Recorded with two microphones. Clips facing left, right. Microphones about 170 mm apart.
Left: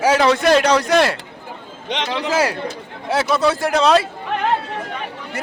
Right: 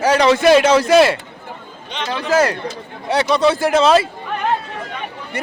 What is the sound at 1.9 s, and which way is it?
Speech, 90° left.